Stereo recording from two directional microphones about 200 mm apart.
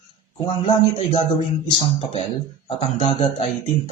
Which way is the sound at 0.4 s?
30° left (ahead or behind).